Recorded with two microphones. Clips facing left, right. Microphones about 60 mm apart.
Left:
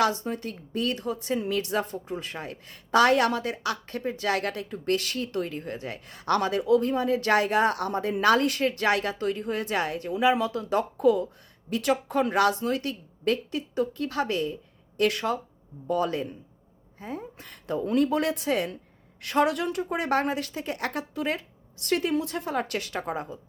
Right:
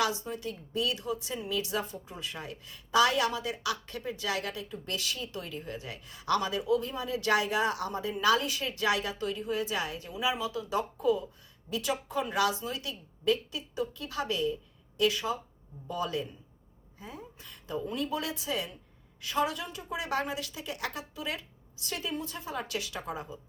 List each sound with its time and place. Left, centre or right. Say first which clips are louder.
0.0 s speech: left 5 dB; left
3.5 s speech: left 4 dB; left
15.9 s a woman's voice: left 7 dB; left
22.1 s speech: left 9 dB; left